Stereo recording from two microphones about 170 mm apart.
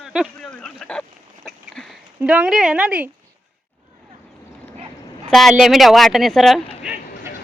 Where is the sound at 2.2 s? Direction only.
5° right (ahead or behind).